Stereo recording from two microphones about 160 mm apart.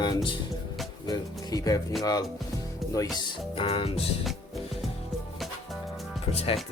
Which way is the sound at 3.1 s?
35° left (ahead or behind).